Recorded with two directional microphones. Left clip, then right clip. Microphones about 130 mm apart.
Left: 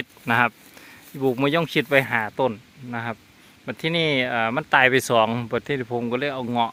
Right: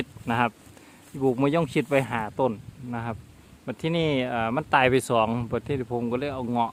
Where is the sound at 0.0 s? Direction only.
5° left (ahead or behind).